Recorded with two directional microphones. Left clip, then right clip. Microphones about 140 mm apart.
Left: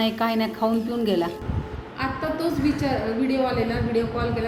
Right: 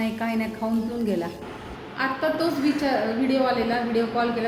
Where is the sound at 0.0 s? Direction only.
20° left (ahead or behind).